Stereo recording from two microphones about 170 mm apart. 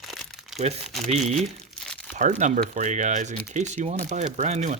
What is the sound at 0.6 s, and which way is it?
Speech, 40° right (ahead or behind).